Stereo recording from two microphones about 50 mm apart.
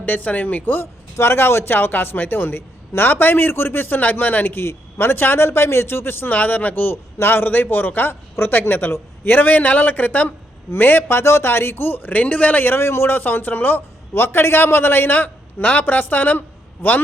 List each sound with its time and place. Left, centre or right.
0.0 s a man's voice: left
1.1 s speech: left
5.5 s speech: left
6.9 s a man's voice: left
11.2 s speech: left
12.1 s a man's voice: left
12.6 s speech: left
14.1 s speech: left